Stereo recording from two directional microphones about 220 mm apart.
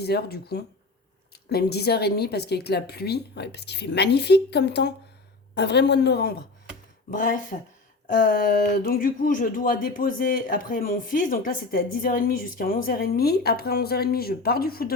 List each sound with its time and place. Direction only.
0.0 s a woman's voice: 45° left (ahead or behind)
7.1 s speech: 35° left (ahead or behind)
8.7 s speech: 45° left (ahead or behind)